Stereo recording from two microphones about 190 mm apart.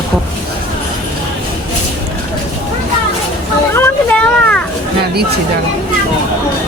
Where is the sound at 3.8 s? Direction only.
10° left (ahead or behind).